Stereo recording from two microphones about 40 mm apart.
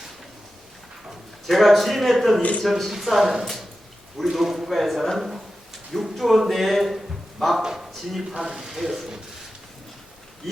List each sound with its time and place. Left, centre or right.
1.5 s speech: centre
3.4 s a man's voice: centre
7.6 s speech: centre
7.9 s speech: centre
8.3 s speech: centre
10.4 s speech: centre